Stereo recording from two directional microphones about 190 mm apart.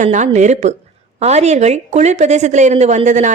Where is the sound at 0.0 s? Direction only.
40° right (ahead or behind).